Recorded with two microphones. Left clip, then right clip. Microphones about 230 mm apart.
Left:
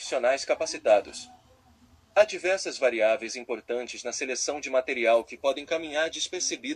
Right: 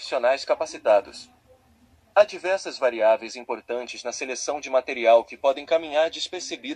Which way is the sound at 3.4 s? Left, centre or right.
Left.